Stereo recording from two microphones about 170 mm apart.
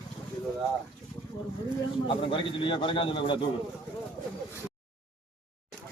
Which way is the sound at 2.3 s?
30° left (ahead or behind).